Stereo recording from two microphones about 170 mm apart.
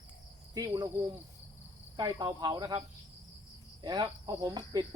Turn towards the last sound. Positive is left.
turn(degrees=-25)  # may be behind; listen again after turning